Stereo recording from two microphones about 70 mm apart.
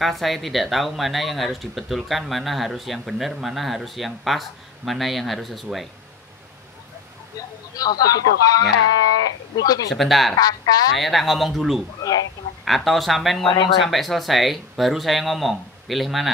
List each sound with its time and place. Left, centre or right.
0.0 s speech: centre
7.7 s speech: left
9.8 s speech: centre
10.3 s speech: left
11.0 s speech: centre
12.0 s speech: left
12.6 s speech: centre